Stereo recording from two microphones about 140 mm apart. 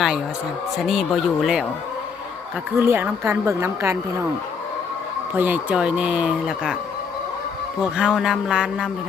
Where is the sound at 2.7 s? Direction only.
15° right (ahead or behind).